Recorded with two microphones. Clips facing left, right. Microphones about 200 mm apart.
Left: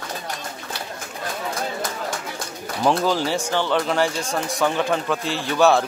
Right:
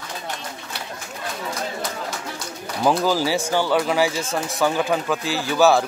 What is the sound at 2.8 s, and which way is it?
Speech, 5° right (ahead or behind).